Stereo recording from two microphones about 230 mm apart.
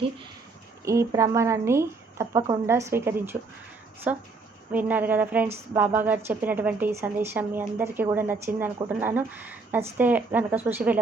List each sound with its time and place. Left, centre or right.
0.9 s a woman's voice: centre